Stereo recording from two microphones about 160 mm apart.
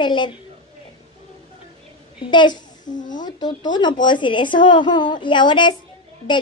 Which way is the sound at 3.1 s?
25° left (ahead or behind).